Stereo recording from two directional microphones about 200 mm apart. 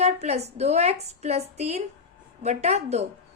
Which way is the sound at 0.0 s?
35° right (ahead or behind).